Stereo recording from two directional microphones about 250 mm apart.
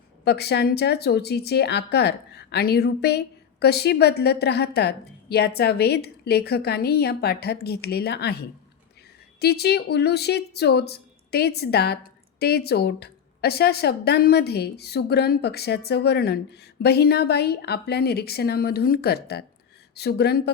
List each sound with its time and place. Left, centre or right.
0.3 s speech: left